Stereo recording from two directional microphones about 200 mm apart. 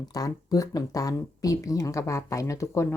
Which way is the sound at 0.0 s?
20° left (ahead or behind).